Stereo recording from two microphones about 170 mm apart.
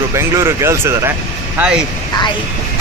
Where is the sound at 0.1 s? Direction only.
15° right (ahead or behind).